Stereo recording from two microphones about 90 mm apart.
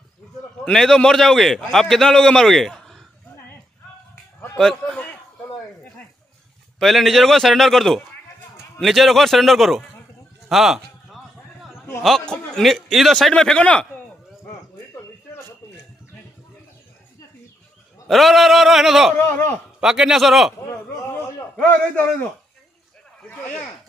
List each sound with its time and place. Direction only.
0.7 s a man's voice: 5° left (ahead or behind)
4.6 s a man's voice: 10° left (ahead or behind)
6.8 s a man's voice: centre (ahead or behind)
10.5 s a sound: 5° right (ahead or behind)
12.0 s a man's voice: 5° left (ahead or behind)
13.3 s a man's voice: 10° left (ahead or behind)
18.0 s a man's voice: centre (ahead or behind)
19.1 s speech: 25° left (ahead or behind)
19.8 s a man's voice: 5° right (ahead or behind)
21.5 s a man's voice: 15° left (ahead or behind)